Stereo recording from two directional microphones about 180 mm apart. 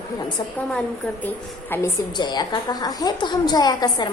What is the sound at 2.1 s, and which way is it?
A woman's voice, 25° left (ahead or behind).